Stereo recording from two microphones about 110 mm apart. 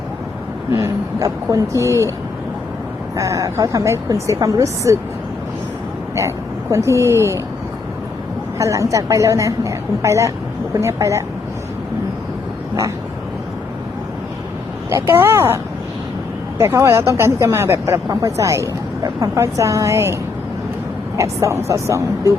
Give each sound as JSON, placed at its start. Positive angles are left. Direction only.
{"t": 0.7, "sound": "speech", "side_deg": -30}
{"t": 3.2, "sound": "speech", "side_deg": -30}
{"t": 6.1, "sound": "speech", "side_deg": -25}
{"t": 8.5, "sound": "speech", "side_deg": -30}
{"t": 15.0, "sound": "speech", "side_deg": -20}
{"t": 21.2, "sound": "speech", "side_deg": -25}